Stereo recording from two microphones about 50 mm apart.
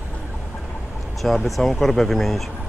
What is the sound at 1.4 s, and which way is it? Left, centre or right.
Speech, centre.